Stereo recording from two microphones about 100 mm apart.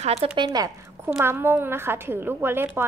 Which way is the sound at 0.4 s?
50° right (ahead or behind).